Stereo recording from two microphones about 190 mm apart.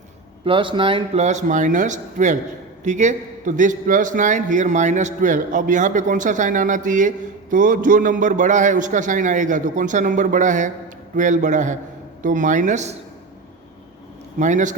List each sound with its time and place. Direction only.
0.4 s a man's voice: 25° right (ahead or behind)
14.3 s a man's voice: 40° right (ahead or behind)